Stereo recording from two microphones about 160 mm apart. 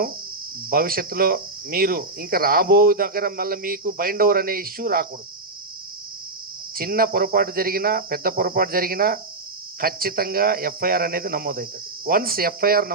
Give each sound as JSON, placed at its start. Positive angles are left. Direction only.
{"t": 0.7, "sound": "cricket", "side_deg": -65}
{"t": 6.7, "sound": "speech", "side_deg": -65}